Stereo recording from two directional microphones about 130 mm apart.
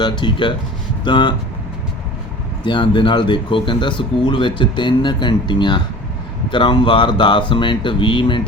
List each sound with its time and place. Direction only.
0.0 s speech: 40° left (ahead or behind)
2.6 s speech: 40° left (ahead or behind)